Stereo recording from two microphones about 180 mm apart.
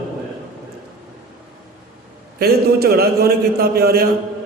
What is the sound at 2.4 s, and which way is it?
A man's voice, 60° right (ahead or behind).